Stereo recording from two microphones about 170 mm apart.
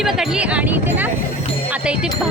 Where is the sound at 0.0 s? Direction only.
Centre (ahead or behind).